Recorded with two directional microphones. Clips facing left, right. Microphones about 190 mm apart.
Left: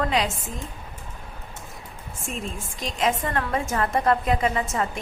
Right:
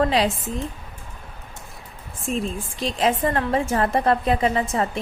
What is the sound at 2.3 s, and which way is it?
A woman's voice, 35° right (ahead or behind).